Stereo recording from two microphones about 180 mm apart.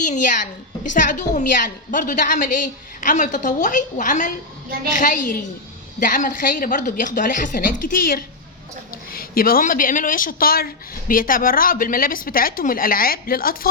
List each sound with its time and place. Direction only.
0.0 s a woman's voice: 45° left (ahead or behind)